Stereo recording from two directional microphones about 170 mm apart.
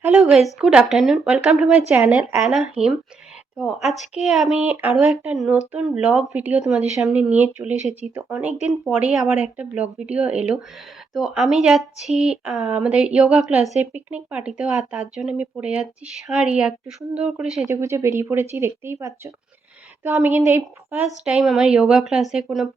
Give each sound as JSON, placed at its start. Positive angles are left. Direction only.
{"t": 0.0, "sound": "speech", "side_deg": -5}
{"t": 17.7, "sound": "speech", "side_deg": -15}
{"t": 21.2, "sound": "speech", "side_deg": -5}